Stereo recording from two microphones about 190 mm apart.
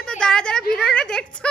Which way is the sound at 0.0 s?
5° left (ahead or behind).